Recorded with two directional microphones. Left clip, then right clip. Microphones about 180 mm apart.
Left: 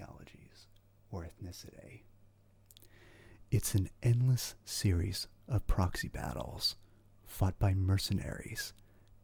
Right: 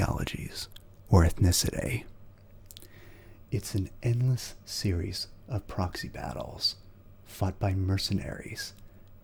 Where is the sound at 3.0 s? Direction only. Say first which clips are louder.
Right 4 dB; 40° left (ahead or behind).